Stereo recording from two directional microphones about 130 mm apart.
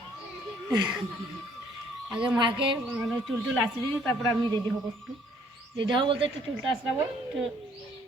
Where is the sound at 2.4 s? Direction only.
40° right (ahead or behind).